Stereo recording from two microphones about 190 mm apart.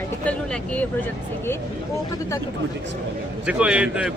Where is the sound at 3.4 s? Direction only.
5° right (ahead or behind).